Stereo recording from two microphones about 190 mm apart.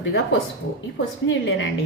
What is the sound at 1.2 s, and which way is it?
Speech, 75° left (ahead or behind).